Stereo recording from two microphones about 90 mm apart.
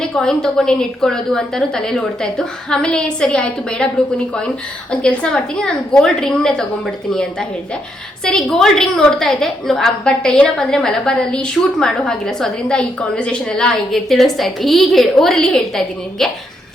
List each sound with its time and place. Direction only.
0.0 s a woman's voice: 5° left (ahead or behind)